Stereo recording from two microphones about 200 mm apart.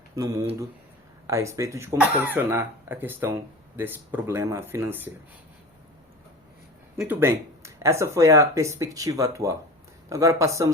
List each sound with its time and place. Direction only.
0.2 s speech: 15° right (ahead or behind)
7.0 s speech: 10° right (ahead or behind)